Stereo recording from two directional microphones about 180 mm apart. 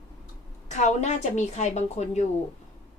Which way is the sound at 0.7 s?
40° left (ahead or behind).